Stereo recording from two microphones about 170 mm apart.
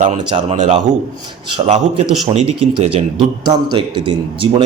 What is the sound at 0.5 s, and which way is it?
A man's voice, 45° right (ahead or behind).